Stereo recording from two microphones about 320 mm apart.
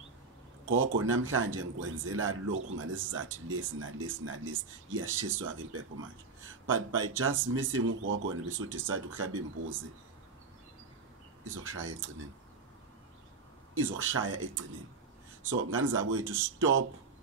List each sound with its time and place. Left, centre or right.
0.7 s speech: right
11.4 s speech: right
13.7 s speech: right
15.5 s speech: right